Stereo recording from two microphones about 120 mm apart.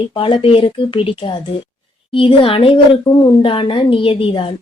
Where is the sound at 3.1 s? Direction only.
25° left (ahead or behind).